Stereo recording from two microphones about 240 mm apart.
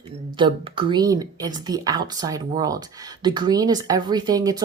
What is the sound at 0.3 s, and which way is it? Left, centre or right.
Speech, right.